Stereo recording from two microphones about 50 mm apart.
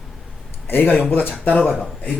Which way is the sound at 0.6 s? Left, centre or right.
Left.